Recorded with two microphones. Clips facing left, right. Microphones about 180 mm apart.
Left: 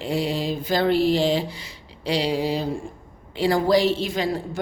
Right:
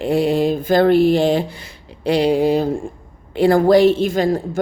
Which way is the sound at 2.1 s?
55° right (ahead or behind).